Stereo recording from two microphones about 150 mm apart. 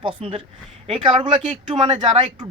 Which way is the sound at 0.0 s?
35° right (ahead or behind).